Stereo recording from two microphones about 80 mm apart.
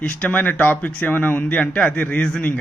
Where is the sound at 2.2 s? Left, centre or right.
Centre.